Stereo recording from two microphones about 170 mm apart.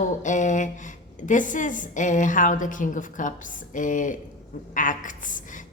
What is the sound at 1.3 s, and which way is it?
A woman's voice, 50° left (ahead or behind).